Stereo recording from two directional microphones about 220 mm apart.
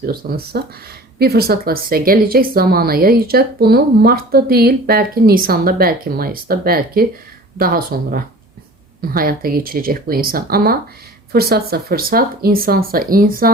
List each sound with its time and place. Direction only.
0.0 s speech: 45° right (ahead or behind)